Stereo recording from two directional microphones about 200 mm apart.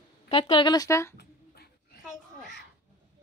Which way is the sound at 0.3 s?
25° left (ahead or behind).